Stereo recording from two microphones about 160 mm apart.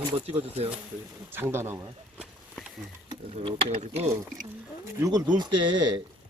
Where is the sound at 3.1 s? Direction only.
35° right (ahead or behind).